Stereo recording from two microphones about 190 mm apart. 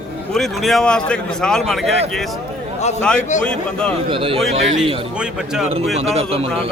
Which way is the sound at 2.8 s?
35° left (ahead or behind).